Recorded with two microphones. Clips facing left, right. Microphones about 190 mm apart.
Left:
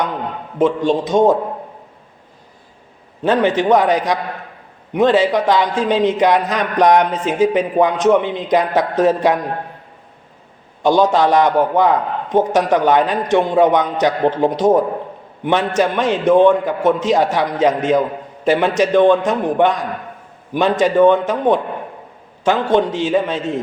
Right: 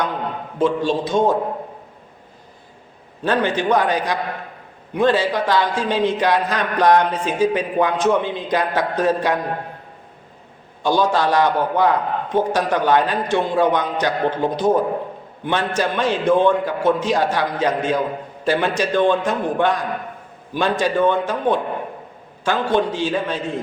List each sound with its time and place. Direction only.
0.6 s a man's voice: 20° left (ahead or behind)
3.2 s a man's voice: 20° left (ahead or behind)
10.8 s a man's voice: 20° left (ahead or behind)